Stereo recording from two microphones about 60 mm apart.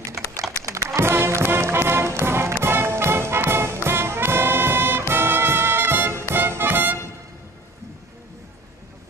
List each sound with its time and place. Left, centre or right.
0.6 s music: right